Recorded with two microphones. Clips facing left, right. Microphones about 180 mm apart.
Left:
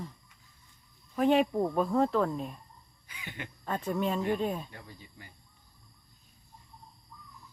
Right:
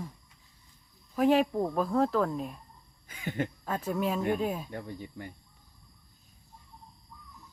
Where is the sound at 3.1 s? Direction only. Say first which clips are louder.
Right 11 dB; 45° right (ahead or behind).